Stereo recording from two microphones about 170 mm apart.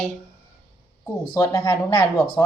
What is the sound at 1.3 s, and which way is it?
Speech, 20° left (ahead or behind).